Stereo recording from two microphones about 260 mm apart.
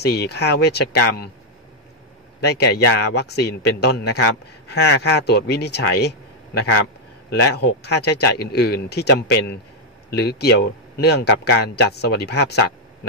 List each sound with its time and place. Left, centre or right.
0.0 s speech: left
2.4 s speech: left